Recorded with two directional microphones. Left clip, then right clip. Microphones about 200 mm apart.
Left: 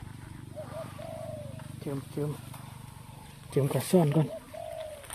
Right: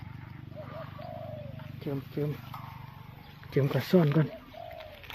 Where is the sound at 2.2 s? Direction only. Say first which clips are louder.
Right 1 dB; 10° right (ahead or behind).